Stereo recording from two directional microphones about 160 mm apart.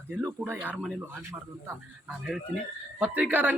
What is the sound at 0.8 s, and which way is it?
Speech, centre (ahead or behind).